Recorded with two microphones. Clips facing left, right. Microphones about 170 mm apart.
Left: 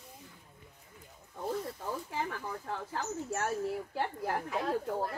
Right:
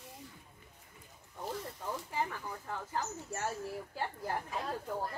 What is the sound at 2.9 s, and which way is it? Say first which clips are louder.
Speech: left 3 dB; 70° left (ahead or behind).